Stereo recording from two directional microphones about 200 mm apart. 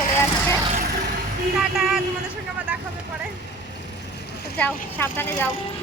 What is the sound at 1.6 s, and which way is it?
Speech, centre (ahead or behind).